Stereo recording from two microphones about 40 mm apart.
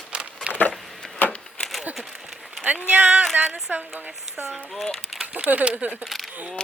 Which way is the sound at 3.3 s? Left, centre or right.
Right.